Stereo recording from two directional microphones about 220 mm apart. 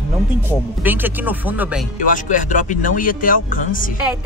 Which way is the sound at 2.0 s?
35° left (ahead or behind).